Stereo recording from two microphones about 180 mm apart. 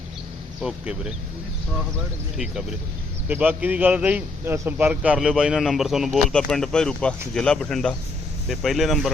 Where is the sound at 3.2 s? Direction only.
10° right (ahead or behind).